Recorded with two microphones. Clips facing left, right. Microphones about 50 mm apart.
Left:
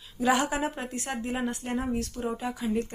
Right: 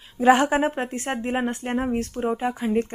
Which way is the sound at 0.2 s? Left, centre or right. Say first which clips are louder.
Right 8 dB; right.